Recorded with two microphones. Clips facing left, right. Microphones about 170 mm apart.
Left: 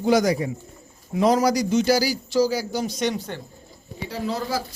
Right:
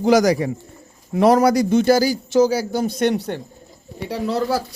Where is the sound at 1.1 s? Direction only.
60° right (ahead or behind).